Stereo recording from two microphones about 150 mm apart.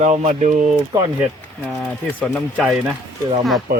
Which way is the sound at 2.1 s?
Centre (ahead or behind).